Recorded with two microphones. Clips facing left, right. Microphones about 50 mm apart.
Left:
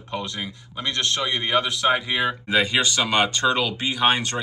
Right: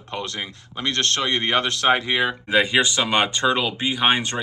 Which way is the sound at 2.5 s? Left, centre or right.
Right.